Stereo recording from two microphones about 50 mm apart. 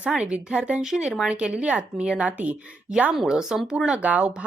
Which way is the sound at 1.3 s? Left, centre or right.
Right.